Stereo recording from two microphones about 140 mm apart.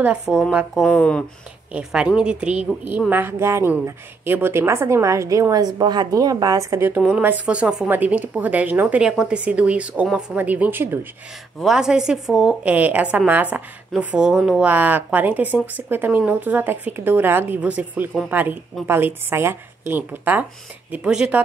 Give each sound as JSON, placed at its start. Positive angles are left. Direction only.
{"t": 0.3, "sound": "speech", "side_deg": -5}
{"t": 0.8, "sound": "speech", "side_deg": 5}
{"t": 1.7, "sound": "a woman's voice", "side_deg": -5}
{"t": 7.0, "sound": "a woman's voice", "side_deg": -10}
{"t": 11.6, "sound": "a woman's voice", "side_deg": -5}